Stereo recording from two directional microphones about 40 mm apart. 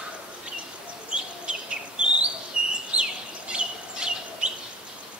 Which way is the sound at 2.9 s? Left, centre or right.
Right.